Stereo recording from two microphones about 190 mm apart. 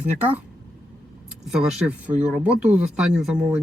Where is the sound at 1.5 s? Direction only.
5° right (ahead or behind).